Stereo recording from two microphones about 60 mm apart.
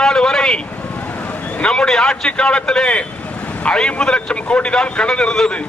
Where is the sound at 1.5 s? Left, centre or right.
Centre.